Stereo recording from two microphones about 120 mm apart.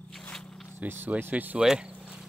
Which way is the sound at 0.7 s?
15° right (ahead or behind).